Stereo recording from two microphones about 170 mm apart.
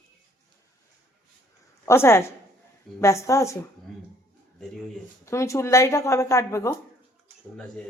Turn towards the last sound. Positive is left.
turn(degrees=15)  # may be behind; listen again after turning